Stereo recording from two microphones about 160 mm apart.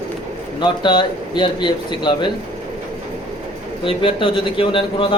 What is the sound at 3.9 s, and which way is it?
Speech, 35° left (ahead or behind).